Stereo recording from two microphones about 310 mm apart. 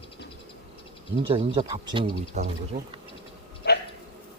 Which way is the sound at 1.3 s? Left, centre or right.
Centre.